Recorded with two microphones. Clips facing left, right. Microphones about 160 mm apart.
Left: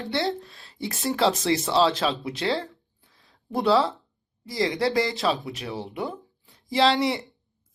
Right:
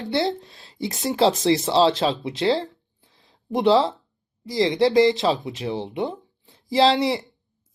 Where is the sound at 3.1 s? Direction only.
25° right (ahead or behind).